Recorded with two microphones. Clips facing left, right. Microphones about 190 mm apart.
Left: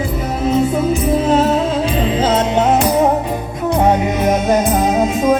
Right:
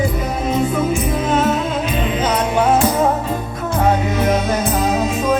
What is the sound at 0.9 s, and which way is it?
Music, 35° left (ahead or behind).